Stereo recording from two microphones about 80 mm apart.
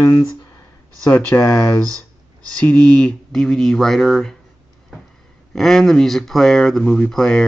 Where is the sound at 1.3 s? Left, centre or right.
Left.